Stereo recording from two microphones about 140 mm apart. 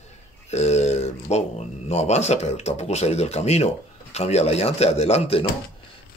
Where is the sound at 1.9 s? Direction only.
55° left (ahead or behind).